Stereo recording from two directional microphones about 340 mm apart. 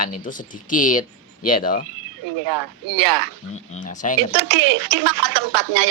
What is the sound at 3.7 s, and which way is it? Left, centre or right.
Speech, left.